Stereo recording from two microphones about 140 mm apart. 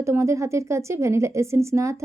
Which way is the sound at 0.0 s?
20° right (ahead or behind).